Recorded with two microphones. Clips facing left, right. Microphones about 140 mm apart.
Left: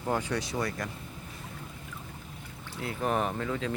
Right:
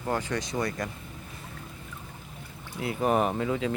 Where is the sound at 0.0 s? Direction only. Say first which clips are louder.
Right 1 dB; 10° left (ahead or behind).